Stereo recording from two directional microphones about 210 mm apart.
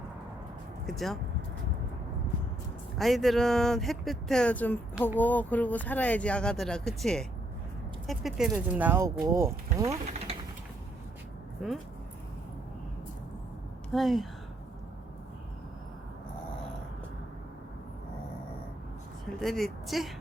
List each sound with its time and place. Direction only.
0.9 s speech: centre (ahead or behind)
3.0 s speech: centre (ahead or behind)
11.6 s speech: centre (ahead or behind)
13.9 s speech: centre (ahead or behind)
19.4 s speech: centre (ahead or behind)